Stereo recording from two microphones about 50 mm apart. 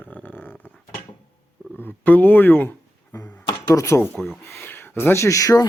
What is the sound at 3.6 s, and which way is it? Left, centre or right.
Speech, left.